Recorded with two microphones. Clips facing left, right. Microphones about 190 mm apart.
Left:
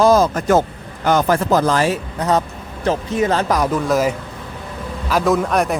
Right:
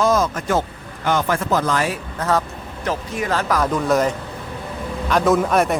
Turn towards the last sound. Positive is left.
turn(degrees=0)  # may be behind; listen again after turning